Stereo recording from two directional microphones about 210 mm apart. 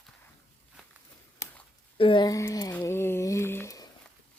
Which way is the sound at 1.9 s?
25° left (ahead or behind).